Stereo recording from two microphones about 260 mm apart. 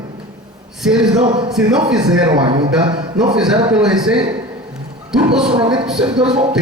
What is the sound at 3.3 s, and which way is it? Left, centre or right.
Speech, centre.